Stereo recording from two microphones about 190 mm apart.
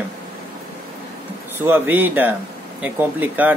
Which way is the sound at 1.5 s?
10° right (ahead or behind).